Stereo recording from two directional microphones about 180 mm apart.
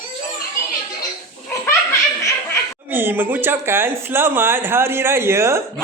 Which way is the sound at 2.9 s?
10° right (ahead or behind).